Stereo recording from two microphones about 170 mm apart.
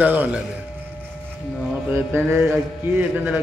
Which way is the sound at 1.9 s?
15° right (ahead or behind).